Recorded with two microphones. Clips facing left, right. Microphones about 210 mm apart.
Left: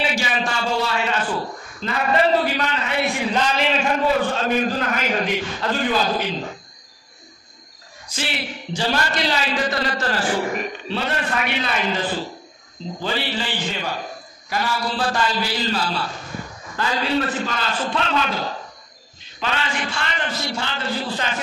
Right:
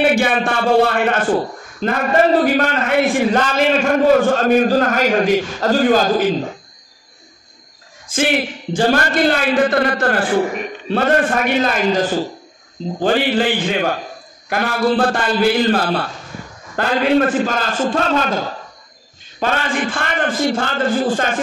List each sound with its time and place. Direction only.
0.0 s a man's voice: 55° right (ahead or behind)
8.1 s a man's voice: 50° right (ahead or behind)
19.4 s a man's voice: 50° right (ahead or behind)